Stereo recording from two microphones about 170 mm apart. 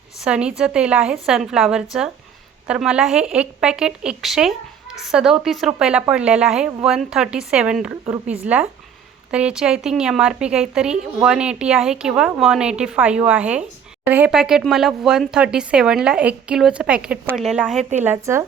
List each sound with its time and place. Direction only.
0.2 s a woman's voice: 5° right (ahead or behind)
18.0 s a woman's voice: 15° right (ahead or behind)